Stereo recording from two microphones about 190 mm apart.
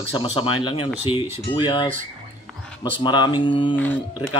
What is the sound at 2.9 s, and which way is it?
Speech, 25° left (ahead or behind).